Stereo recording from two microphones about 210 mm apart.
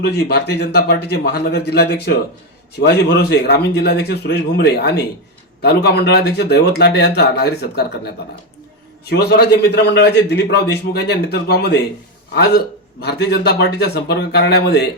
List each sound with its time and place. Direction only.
0.0 s a man's voice: 50° left (ahead or behind)